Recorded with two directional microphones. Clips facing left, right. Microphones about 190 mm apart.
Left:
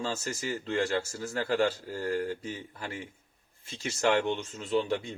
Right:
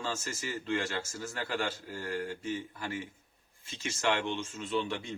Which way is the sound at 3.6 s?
35° left (ahead or behind).